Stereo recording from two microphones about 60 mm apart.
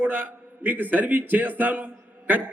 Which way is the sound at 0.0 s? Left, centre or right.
Right.